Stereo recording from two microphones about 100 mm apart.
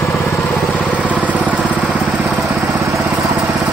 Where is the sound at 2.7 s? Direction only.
30° right (ahead or behind).